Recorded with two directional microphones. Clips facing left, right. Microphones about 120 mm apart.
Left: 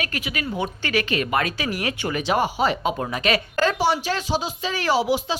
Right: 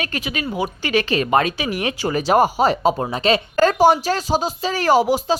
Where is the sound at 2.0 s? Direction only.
40° right (ahead or behind).